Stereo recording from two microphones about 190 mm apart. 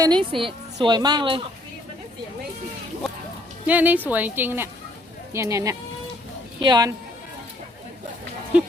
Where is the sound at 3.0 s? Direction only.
Centre (ahead or behind); by 6.9 s 20° right (ahead or behind).